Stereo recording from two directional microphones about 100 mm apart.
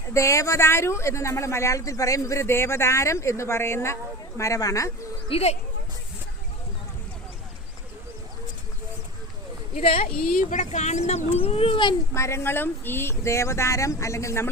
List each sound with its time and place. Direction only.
0.1 s speech: 30° left (ahead or behind)
5.3 s speech: 90° left
9.8 s speech: 70° left (ahead or behind)
10.7 s speech: 90° left
11.4 s a child's voice: 70° left (ahead or behind); by 11.9 s 55° left (ahead or behind)
12.1 s speech: 30° left (ahead or behind)